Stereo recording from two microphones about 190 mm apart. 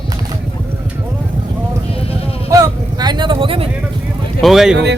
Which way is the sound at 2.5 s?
20° right (ahead or behind).